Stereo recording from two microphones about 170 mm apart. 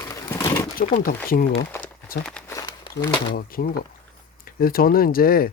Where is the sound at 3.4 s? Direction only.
60° left (ahead or behind).